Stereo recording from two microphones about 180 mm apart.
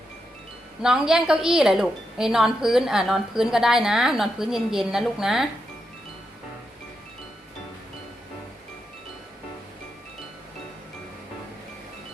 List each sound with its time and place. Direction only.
0.8 s a woman's voice: 5° right (ahead or behind)